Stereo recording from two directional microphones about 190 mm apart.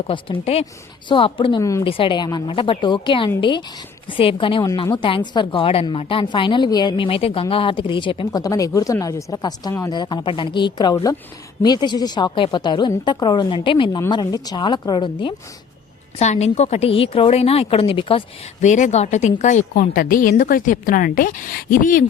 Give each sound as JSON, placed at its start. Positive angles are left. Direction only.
{"t": 0.1, "sound": "a woman's voice", "side_deg": 30}
{"t": 16.1, "sound": "a woman's voice", "side_deg": 35}
{"t": 18.6, "sound": "a woman's voice", "side_deg": 40}